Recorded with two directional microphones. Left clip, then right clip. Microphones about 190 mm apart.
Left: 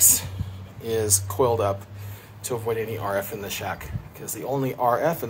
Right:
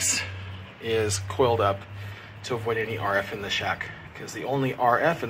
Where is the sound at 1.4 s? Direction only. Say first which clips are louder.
Right 1 dB; 20° left (ahead or behind).